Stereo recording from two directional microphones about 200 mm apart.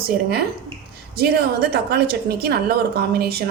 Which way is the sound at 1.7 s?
50° right (ahead or behind).